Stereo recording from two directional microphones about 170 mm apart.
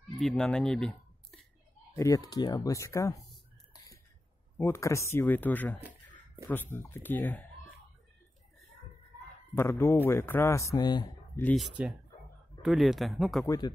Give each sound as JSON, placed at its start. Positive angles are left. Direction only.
{"t": 0.2, "sound": "speech", "side_deg": 5}
{"t": 2.0, "sound": "speech", "side_deg": 20}
{"t": 4.6, "sound": "speech", "side_deg": 15}
{"t": 9.6, "sound": "speech", "side_deg": 15}
{"t": 11.5, "sound": "speech", "side_deg": -5}